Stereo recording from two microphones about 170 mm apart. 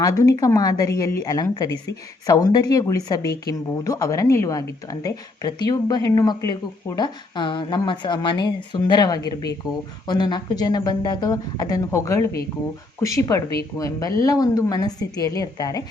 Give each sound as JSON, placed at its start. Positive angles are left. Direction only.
{"t": 0.0, "sound": "speech", "side_deg": 20}